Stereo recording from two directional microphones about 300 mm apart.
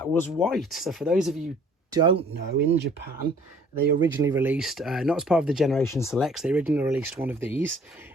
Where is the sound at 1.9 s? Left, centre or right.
Centre.